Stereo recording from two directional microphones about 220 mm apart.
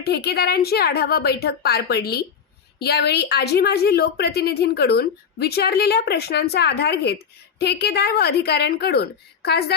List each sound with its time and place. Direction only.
0.0 s a woman's voice: 45° left (ahead or behind)